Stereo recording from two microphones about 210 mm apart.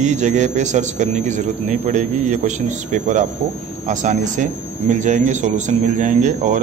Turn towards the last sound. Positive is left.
turn(degrees=-35)  # may be behind; listen again after turning